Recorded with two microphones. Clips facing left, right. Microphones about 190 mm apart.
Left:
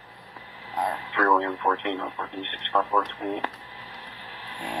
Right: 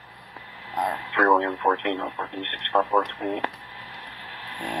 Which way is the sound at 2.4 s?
65° right (ahead or behind).